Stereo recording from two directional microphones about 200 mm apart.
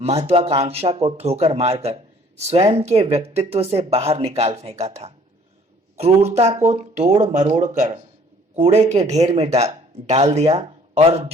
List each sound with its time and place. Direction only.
0.0 s speech: 30° right (ahead or behind)
6.0 s speech: 30° right (ahead or behind)